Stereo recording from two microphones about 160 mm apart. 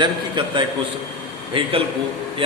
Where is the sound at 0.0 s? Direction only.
30° right (ahead or behind).